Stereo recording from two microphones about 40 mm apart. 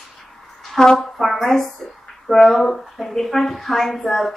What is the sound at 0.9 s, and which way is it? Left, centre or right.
Speech, centre.